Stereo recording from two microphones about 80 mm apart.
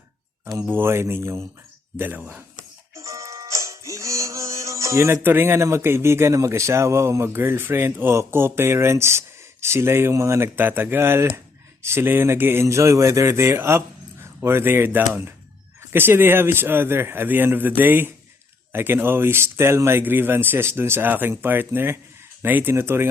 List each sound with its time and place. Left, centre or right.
0.7 s speech: right
2.9 s music: right
5.2 s speech: right